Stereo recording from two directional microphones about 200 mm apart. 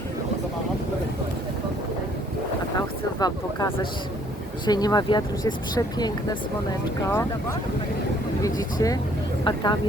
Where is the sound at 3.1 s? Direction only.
20° left (ahead or behind).